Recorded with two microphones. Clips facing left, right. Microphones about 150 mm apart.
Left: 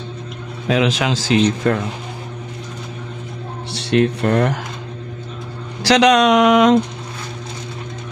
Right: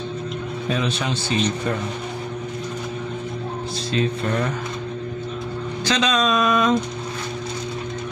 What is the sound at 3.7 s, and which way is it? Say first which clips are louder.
Speech: left 8 dB; 70° left (ahead or behind).